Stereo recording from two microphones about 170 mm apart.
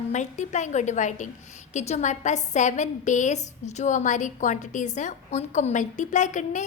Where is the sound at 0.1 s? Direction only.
45° left (ahead or behind).